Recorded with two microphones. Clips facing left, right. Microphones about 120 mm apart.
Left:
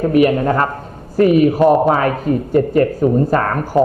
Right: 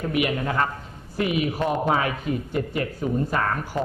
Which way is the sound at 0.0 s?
40° left (ahead or behind).